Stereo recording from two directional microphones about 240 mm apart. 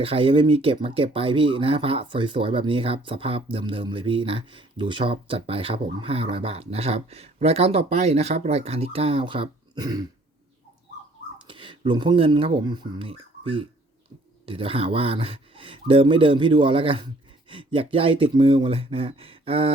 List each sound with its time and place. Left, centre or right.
0.0 s speech: right
11.4 s speech: right